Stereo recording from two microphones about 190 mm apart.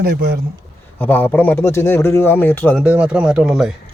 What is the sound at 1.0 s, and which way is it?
A man's voice, 10° left (ahead or behind).